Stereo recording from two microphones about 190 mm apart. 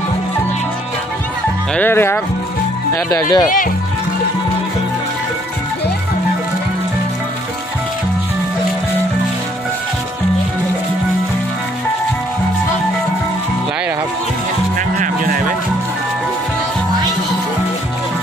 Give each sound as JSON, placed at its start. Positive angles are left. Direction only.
{"t": 1.8, "sound": "speech", "side_deg": 10}
{"t": 3.4, "sound": "speech", "side_deg": 45}
{"t": 15.0, "sound": "a sound", "side_deg": -45}